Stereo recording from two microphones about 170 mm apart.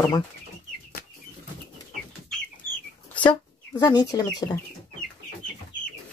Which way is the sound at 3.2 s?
25° left (ahead or behind).